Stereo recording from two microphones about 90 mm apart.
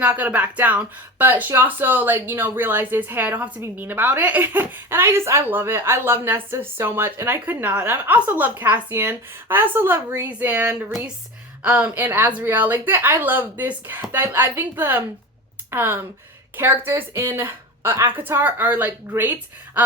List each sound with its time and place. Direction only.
0.0 s a woman's voice: 15° right (ahead or behind)